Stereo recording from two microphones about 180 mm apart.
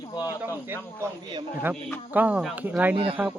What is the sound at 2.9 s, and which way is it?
Speech, 30° right (ahead or behind).